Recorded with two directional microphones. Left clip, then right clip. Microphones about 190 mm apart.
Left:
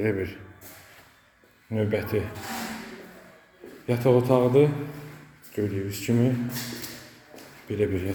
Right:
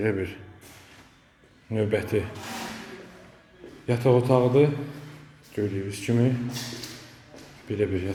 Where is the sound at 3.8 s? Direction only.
10° right (ahead or behind).